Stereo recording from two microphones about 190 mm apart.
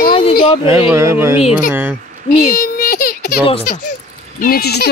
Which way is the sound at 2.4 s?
45° left (ahead or behind).